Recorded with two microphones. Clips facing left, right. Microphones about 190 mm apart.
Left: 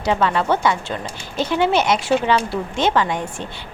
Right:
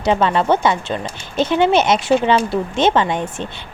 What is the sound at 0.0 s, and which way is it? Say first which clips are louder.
Speech: right 3 dB; 25° right (ahead or behind).